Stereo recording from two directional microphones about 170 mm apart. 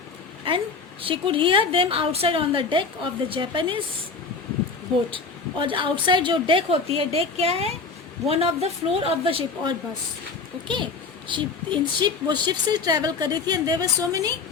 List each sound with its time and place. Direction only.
0.5 s a sound: 30° right (ahead or behind)
1.0 s a woman's voice: 30° right (ahead or behind)
5.1 s a woman's voice: 30° right (ahead or behind)
11.3 s a woman's voice: 30° right (ahead or behind)